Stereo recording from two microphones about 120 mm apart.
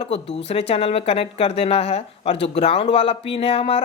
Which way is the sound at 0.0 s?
55° left (ahead or behind).